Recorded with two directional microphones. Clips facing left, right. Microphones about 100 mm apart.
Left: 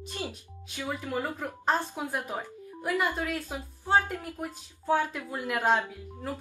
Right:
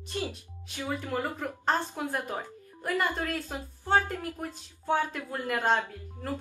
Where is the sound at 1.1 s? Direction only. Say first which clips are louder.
Even; 15° left (ahead or behind).